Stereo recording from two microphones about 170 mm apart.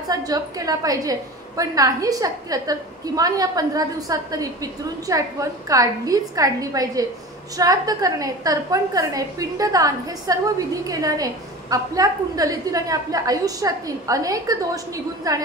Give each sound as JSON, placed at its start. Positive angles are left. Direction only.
{"t": 0.1, "sound": "a woman's voice", "side_deg": -20}